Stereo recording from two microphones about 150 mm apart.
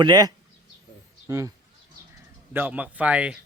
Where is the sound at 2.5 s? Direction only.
10° right (ahead or behind).